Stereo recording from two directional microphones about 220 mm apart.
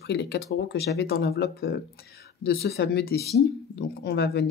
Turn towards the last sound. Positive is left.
turn(degrees=50)  # may be behind; listen again after turning